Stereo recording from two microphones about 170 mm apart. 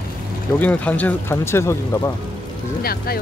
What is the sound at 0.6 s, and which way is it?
Speech, 10° left (ahead or behind).